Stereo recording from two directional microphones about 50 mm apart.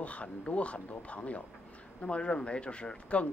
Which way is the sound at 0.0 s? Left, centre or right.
Left.